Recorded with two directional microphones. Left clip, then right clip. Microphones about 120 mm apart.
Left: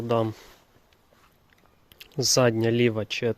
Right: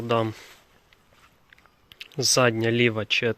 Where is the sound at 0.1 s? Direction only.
25° left (ahead or behind).